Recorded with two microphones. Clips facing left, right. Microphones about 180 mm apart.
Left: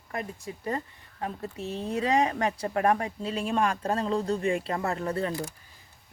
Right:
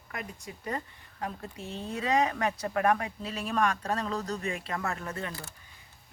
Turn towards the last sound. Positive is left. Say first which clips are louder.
# left 6 dB
turn(degrees=35)  # may be behind; listen again after turning